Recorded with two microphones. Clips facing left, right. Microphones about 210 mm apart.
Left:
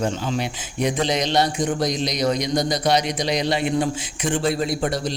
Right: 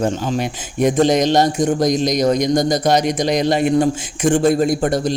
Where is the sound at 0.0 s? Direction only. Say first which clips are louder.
Right 4 dB; 45° right (ahead or behind).